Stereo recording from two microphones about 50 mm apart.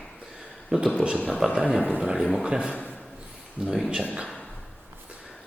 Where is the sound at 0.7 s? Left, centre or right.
Right.